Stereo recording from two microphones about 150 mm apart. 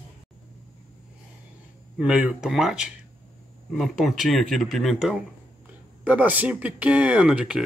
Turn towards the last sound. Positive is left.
turn(degrees=-5)  # may be behind; listen again after turning